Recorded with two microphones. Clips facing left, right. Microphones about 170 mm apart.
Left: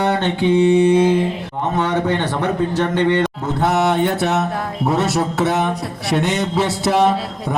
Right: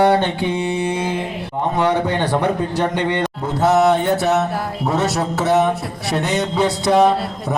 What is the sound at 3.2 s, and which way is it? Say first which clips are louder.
Mantra: even; centre (ahead or behind).